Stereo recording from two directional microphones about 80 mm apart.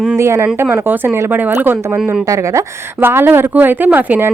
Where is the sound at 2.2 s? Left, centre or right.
Right.